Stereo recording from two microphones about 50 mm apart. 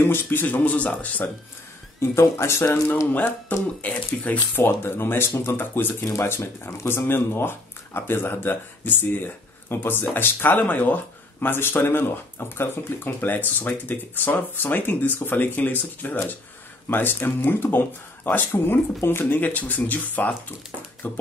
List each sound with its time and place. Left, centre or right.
0.3 s speech: left
2.0 s speech: left
2.7 s speech: left
4.6 s speech: left